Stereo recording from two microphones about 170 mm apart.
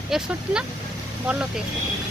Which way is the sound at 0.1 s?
5° right (ahead or behind).